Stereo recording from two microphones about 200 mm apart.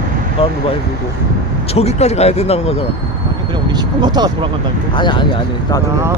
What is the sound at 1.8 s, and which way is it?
Speech, 35° left (ahead or behind).